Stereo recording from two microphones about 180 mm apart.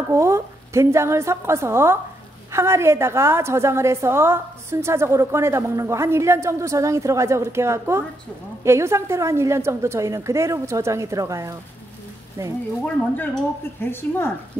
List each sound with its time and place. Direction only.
0.1 s a woman's voice: 15° right (ahead or behind)
12.8 s a woman's voice: 5° left (ahead or behind)